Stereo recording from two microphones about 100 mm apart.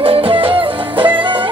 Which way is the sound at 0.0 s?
70° right (ahead or behind).